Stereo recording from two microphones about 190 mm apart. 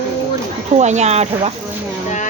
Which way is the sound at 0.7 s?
35° right (ahead or behind).